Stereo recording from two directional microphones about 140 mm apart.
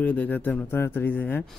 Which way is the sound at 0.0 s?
10° left (ahead or behind).